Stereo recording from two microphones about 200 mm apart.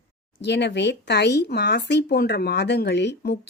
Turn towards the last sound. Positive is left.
turn(degrees=55)  # may be behind; listen again after turning